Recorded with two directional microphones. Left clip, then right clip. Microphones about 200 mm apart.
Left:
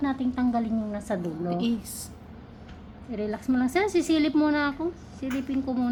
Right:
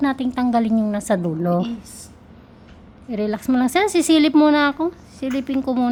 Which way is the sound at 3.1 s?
55° right (ahead or behind).